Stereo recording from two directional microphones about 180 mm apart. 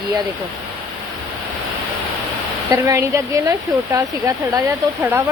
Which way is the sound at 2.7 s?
15° right (ahead or behind).